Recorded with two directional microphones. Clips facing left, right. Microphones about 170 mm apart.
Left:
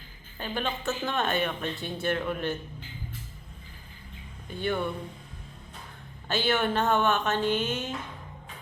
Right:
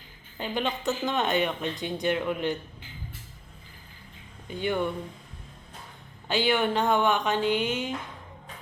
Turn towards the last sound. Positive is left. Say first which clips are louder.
# right 2 dB
turn(degrees=-15)  # may be behind; listen again after turning